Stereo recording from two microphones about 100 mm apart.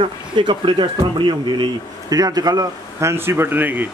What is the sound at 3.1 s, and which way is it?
Speech, 25° right (ahead or behind).